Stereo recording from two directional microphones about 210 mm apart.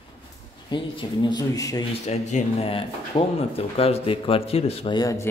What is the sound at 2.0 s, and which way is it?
Speech, 35° left (ahead or behind).